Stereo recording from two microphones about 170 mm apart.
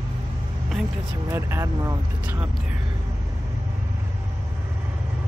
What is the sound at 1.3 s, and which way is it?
Speech, 15° right (ahead or behind).